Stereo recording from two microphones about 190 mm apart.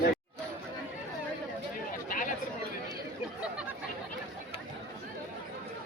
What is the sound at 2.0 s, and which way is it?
Chatter, 45° left (ahead or behind).